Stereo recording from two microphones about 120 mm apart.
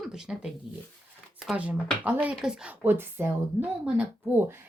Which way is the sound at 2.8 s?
20° right (ahead or behind).